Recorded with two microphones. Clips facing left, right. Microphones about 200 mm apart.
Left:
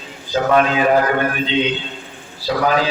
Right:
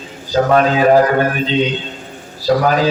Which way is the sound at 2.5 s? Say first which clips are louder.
Right 6 dB; 45° right (ahead or behind).